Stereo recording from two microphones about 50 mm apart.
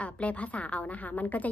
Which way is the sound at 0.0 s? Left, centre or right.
Left.